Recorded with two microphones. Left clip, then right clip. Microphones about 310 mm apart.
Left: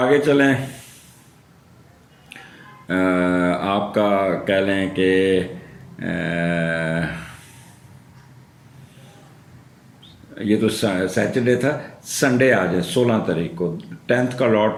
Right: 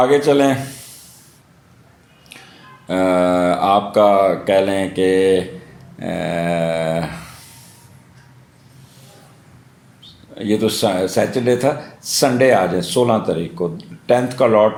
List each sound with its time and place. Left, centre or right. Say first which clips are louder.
0.0 s speech: right 3 dB; centre
2.8 s speech: right 4 dB; centre
10.3 s speech: right 2 dB; centre